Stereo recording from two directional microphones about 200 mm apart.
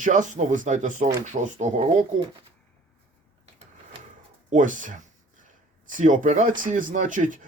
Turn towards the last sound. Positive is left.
turn(degrees=-40)  # may be behind; listen again after turning